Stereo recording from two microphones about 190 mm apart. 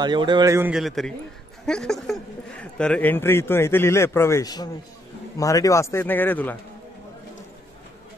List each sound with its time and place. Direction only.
0.0 s a man's voice: 25° right (ahead or behind); by 6.6 s 10° left (ahead or behind)